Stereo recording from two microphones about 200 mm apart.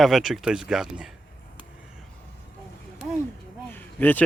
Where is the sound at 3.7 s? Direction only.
10° left (ahead or behind).